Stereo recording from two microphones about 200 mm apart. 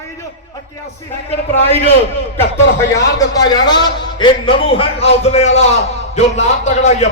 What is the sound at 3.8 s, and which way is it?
A man's voice, 25° left (ahead or behind).